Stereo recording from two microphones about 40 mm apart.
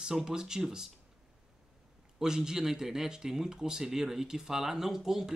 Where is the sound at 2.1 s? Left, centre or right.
Centre.